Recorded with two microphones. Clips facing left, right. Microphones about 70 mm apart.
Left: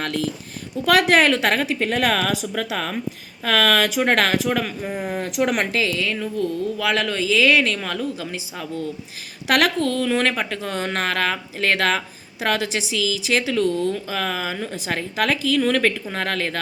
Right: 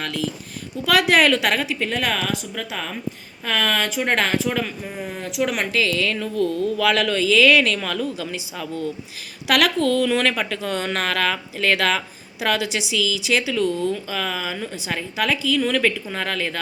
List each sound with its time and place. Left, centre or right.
0.0 s a woman's voice: left
3.4 s speech: left
4.8 s speech: centre
5.4 s a man's voice: left